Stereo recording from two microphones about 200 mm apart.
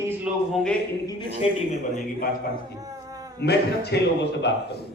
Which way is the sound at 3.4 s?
55° left (ahead or behind).